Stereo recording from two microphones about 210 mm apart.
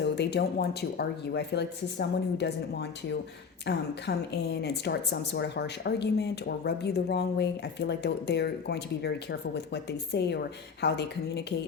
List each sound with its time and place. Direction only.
0.0 s speech: 55° left (ahead or behind)
3.7 s a woman's voice: 55° left (ahead or behind)